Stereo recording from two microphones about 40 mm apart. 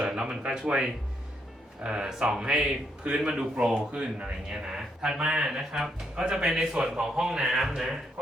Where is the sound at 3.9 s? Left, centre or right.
Right.